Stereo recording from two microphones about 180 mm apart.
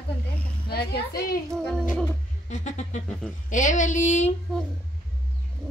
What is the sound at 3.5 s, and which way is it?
Speech, 45° left (ahead or behind).